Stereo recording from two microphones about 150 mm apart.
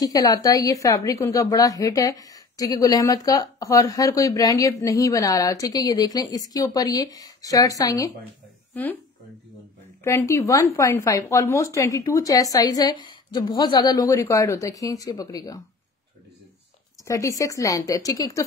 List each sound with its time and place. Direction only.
0.0 s a woman's voice: 25° left (ahead or behind)
10.0 s a woman's voice: 20° left (ahead or behind)
17.0 s a woman's voice: 20° left (ahead or behind)